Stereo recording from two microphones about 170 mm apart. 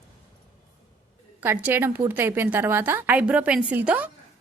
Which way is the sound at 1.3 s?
10° right (ahead or behind).